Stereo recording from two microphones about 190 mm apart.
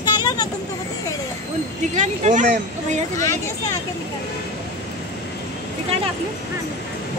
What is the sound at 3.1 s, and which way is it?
Speech, 15° left (ahead or behind).